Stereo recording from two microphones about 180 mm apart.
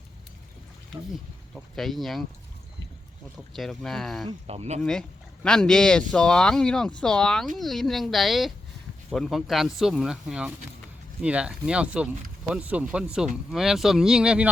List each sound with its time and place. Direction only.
1.1 s speech: centre (ahead or behind)
3.3 s speech: centre (ahead or behind)
4.4 s speech: 35° right (ahead or behind)
4.8 s speech: 5° left (ahead or behind)